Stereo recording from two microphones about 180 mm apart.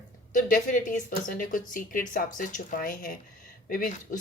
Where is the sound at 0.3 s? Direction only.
45° left (ahead or behind).